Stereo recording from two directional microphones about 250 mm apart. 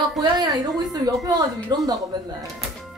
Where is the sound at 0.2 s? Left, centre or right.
Centre.